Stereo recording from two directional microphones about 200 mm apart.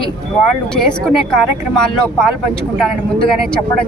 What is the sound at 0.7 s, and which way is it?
Speech, centre (ahead or behind).